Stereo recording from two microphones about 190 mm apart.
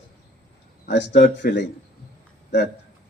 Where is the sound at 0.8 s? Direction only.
65° left (ahead or behind).